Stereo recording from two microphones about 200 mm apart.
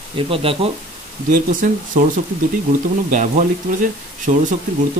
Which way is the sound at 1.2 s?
40° right (ahead or behind).